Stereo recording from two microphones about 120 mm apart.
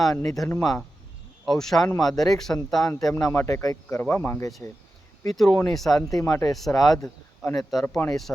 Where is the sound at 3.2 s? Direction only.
25° left (ahead or behind).